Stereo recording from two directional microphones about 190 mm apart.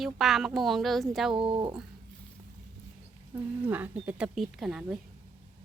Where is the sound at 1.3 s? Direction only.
25° right (ahead or behind).